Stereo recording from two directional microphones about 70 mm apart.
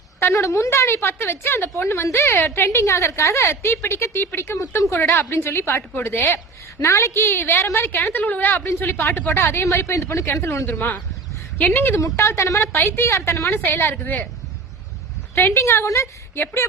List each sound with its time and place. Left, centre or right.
0.2 s a woman's voice: left
4.5 s a woman's voice: left
10.7 s speech: left
11.9 s a woman's voice: left
15.5 s a woman's voice: left